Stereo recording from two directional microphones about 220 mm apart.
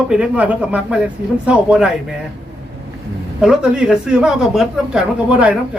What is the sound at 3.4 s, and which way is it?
Speech, 5° right (ahead or behind).